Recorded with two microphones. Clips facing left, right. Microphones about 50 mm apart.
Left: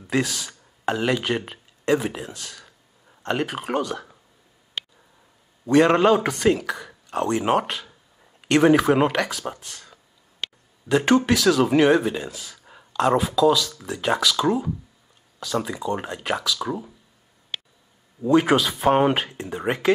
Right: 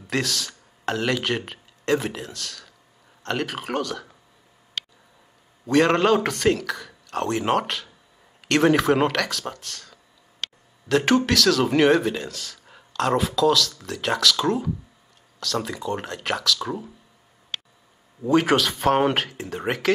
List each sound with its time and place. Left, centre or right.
0.0 s a man's voice: centre
5.7 s a man's voice: centre
18.2 s a man's voice: centre